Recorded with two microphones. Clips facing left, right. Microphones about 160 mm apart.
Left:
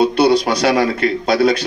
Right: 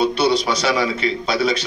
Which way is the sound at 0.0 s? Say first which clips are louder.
Left 5 dB; 55° left (ahead or behind).